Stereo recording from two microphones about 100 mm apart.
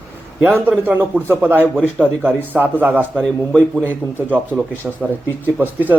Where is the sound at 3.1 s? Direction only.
5° left (ahead or behind).